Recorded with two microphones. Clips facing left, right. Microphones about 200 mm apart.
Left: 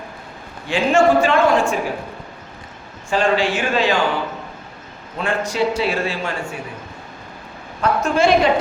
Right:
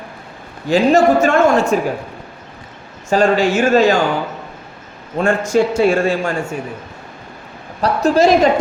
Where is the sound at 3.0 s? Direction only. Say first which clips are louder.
Right 4 dB; 45° right (ahead or behind).